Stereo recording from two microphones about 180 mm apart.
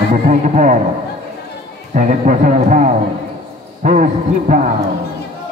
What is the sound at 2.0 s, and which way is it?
Speech, 45° right (ahead or behind).